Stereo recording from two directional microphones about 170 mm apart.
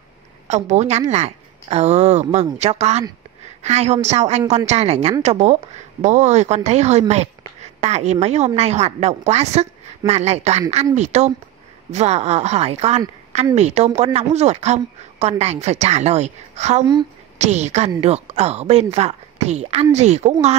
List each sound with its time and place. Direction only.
0.5 s speech: 40° right (ahead or behind)